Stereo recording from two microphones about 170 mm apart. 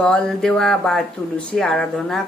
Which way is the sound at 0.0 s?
5° left (ahead or behind).